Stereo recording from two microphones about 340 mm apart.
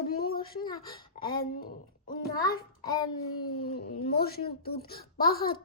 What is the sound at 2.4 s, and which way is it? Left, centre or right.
Child singing, centre.